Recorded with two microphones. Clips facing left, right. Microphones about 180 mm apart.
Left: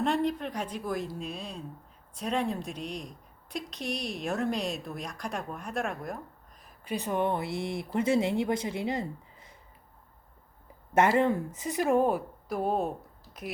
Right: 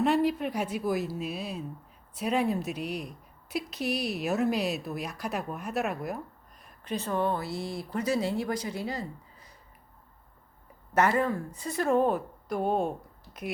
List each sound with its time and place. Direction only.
0.0 s speech: 5° right (ahead or behind)
6.6 s a sound: centre (ahead or behind)
6.9 s a woman's voice: 15° left (ahead or behind)
10.9 s speech: 25° left (ahead or behind); by 13.5 s centre (ahead or behind)